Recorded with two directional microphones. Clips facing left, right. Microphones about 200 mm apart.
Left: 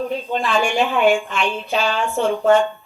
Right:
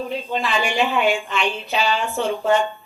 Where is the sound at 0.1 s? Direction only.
50° left (ahead or behind).